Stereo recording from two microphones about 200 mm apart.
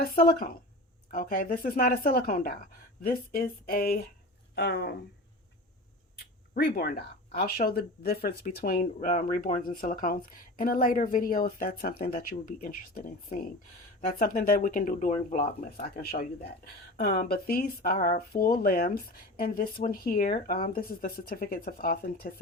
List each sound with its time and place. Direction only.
0.0 s speech: 45° left (ahead or behind)
6.1 s speech: 50° left (ahead or behind)